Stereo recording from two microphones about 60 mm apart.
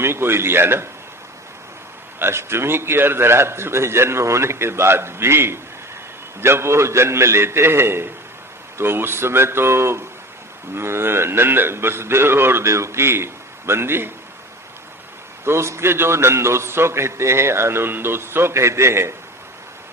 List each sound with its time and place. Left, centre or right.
0.0 s a man's voice: right
2.1 s a man's voice: right
15.4 s a man's voice: right